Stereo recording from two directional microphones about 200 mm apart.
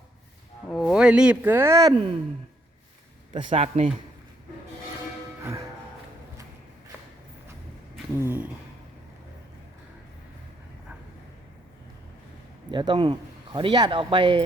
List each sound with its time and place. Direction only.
0.7 s speech: centre (ahead or behind); by 2.0 s 20° right (ahead or behind)
3.3 s speech: 30° right (ahead or behind)
5.4 s music: 15° right (ahead or behind)
8.2 s speech: 10° right (ahead or behind)
12.7 s speech: 20° right (ahead or behind)